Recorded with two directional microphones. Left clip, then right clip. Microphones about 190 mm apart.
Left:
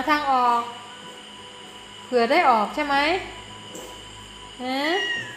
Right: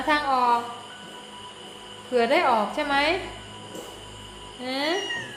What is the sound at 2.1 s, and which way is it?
A woman's voice, 35° left (ahead or behind).